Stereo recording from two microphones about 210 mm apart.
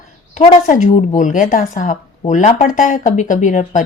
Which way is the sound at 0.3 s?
35° left (ahead or behind).